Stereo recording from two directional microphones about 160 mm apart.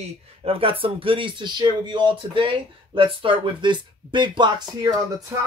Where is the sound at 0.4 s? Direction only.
35° right (ahead or behind).